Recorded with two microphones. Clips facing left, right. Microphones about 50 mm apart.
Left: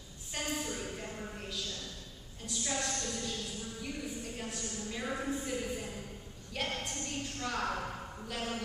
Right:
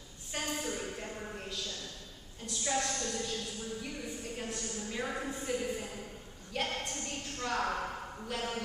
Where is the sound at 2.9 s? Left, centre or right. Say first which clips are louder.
Right 2 dB; centre.